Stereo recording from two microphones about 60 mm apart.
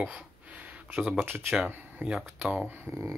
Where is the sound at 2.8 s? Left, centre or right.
Right.